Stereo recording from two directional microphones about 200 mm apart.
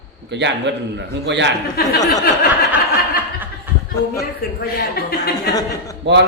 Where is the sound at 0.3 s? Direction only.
60° right (ahead or behind).